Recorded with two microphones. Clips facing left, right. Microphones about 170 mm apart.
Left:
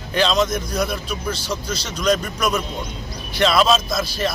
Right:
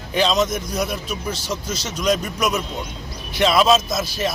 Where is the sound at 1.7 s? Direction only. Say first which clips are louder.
Even; 45° right (ahead or behind).